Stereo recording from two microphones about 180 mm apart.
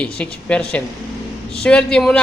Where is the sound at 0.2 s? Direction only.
5° left (ahead or behind).